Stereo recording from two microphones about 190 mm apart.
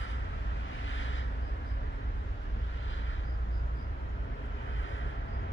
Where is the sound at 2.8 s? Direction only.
90° left.